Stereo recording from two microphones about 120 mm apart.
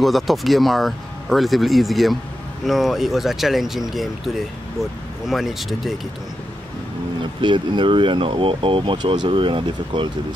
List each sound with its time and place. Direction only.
0.0 s speech: centre (ahead or behind)
7.4 s speech: 40° right (ahead or behind)